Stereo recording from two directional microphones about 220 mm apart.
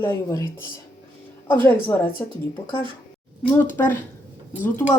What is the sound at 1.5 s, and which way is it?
Speech, 10° left (ahead or behind).